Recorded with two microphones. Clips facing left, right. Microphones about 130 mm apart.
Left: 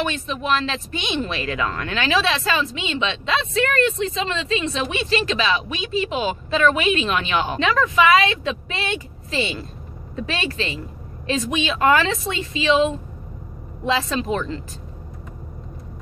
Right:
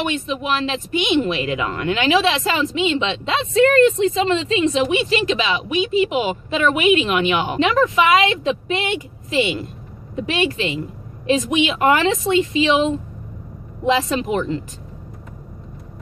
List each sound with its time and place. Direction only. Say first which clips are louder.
0.0 s speech: right 2 dB; 15° right (ahead or behind)